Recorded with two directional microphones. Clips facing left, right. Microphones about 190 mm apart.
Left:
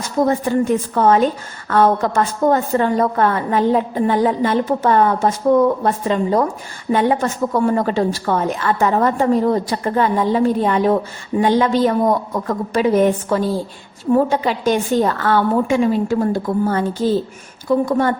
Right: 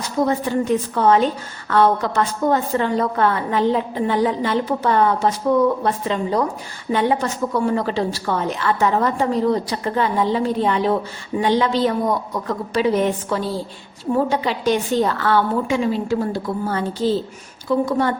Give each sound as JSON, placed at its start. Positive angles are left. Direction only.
{"t": 0.3, "sound": "a woman's voice", "side_deg": 45}